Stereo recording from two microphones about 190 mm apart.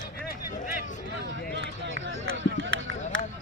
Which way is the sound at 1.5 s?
70° right (ahead or behind).